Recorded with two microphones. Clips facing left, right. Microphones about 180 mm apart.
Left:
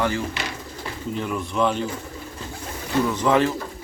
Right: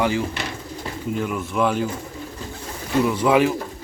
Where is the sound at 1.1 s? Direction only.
5° right (ahead or behind).